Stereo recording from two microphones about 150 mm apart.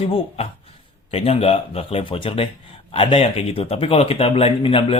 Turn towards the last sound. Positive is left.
turn(degrees=40)  # may be behind; listen again after turning